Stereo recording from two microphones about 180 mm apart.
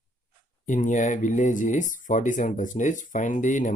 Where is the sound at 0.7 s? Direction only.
45° left (ahead or behind).